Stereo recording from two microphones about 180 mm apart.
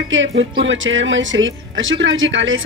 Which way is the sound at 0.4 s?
90° right.